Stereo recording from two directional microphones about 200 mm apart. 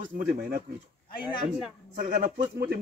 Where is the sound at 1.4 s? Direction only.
5° right (ahead or behind).